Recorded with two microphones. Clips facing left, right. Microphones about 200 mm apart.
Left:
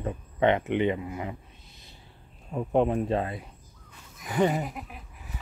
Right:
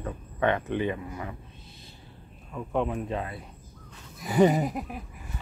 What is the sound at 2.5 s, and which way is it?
Speech, 35° left (ahead or behind).